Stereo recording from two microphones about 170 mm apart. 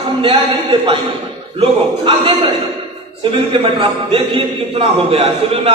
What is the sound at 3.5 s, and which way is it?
A man's voice, 30° right (ahead or behind).